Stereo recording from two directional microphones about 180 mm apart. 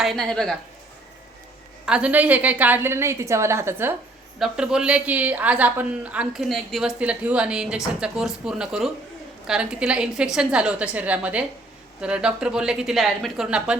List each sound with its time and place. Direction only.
0.0 s a woman's voice: centre (ahead or behind)
1.8 s a woman's voice: 5° right (ahead or behind)